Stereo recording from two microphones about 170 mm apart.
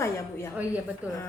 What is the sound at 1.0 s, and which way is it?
Speech, 10° right (ahead or behind).